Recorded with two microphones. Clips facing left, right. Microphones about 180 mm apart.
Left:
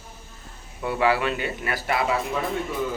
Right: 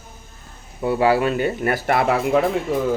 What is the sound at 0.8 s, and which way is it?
Speech, 30° right (ahead or behind).